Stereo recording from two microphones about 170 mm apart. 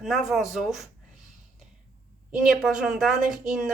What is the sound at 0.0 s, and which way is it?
Speech, centre (ahead or behind).